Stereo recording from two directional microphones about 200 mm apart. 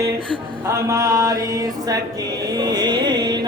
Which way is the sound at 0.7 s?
15° right (ahead or behind).